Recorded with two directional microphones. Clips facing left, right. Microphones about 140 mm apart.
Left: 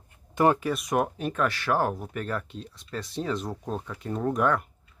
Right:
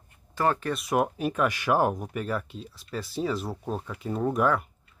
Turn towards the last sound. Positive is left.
turn(degrees=-5)  # may be behind; listen again after turning